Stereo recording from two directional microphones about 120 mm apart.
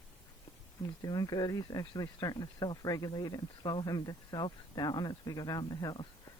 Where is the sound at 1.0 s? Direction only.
30° left (ahead or behind).